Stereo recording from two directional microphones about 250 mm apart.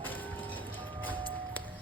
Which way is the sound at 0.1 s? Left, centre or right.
Centre.